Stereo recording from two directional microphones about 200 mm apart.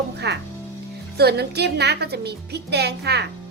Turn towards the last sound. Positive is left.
turn(degrees=-55)  # may be behind; listen again after turning